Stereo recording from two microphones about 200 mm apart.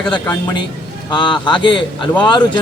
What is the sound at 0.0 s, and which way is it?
Speech, 5° left (ahead or behind).